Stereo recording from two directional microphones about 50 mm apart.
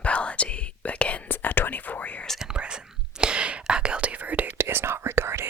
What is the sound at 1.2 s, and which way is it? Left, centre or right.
Whispering, left.